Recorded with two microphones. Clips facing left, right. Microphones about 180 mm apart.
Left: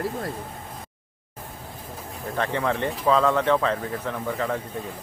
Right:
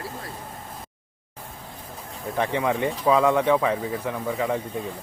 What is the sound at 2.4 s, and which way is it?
Speech, 15° right (ahead or behind).